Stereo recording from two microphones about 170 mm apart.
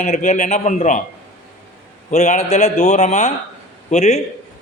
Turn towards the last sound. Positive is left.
turn(degrees=40)  # may be behind; listen again after turning